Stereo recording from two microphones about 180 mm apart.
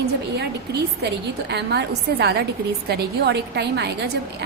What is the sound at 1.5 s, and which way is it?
A woman's voice, 65° right (ahead or behind).